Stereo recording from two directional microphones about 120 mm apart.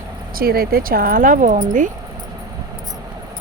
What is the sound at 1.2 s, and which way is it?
Speech, 90° right.